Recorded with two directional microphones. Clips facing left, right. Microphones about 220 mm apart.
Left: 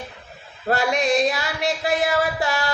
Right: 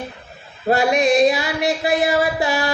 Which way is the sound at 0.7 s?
15° right (ahead or behind).